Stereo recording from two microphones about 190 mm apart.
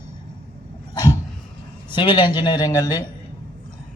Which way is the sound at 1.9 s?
25° left (ahead or behind).